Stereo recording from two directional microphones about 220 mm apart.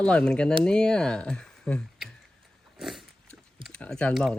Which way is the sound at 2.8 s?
Centre (ahead or behind).